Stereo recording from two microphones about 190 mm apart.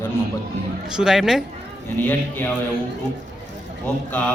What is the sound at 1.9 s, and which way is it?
Speech, 10° left (ahead or behind).